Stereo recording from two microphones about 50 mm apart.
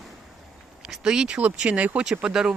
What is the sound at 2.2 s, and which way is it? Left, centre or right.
Speech, centre.